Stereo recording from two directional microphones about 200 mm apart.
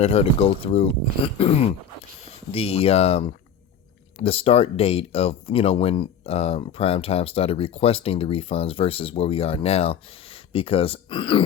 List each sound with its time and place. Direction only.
0.0 s speech: 30° left (ahead or behind)